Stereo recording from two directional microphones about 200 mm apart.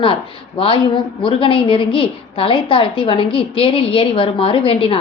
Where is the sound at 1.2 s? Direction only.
25° left (ahead or behind).